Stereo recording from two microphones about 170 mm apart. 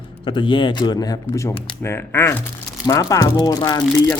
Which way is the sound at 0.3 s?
30° left (ahead or behind).